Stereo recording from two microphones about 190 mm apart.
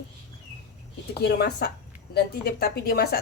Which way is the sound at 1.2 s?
60° left (ahead or behind).